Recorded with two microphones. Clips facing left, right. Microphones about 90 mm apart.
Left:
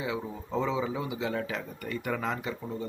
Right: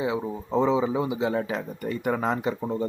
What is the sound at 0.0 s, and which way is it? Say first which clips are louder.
Speech: right 6 dB; 25° right (ahead or behind).